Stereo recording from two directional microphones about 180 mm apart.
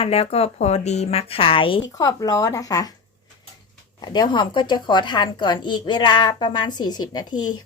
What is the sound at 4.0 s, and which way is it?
Speech, 20° left (ahead or behind).